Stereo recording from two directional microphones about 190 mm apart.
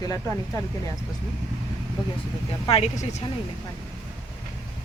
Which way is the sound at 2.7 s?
35° left (ahead or behind).